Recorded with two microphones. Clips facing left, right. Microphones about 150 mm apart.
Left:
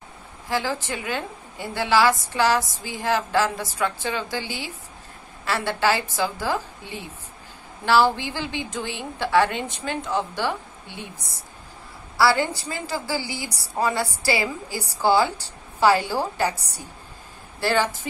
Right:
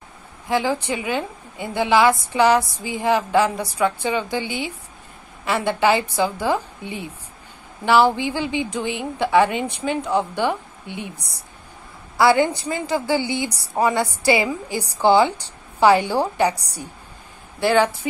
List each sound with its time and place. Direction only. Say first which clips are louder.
0.5 s a woman's voice: right 5 dB; 20° right (ahead or behind)
12.2 s a woman's voice: right 4 dB; 20° right (ahead or behind)